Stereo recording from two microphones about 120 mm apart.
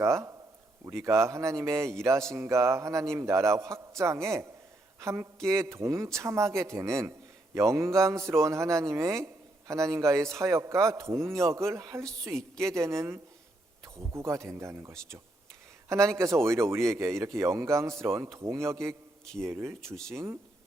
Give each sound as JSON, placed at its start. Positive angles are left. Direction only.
{"t": 0.0, "sound": "a man's voice", "side_deg": -25}
{"t": 20.0, "sound": "speech", "side_deg": 5}